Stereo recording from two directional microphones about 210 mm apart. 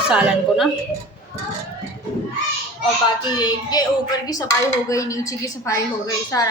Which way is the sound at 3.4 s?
20° left (ahead or behind).